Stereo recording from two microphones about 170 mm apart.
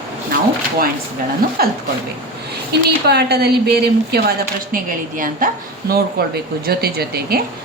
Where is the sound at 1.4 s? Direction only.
55° right (ahead or behind).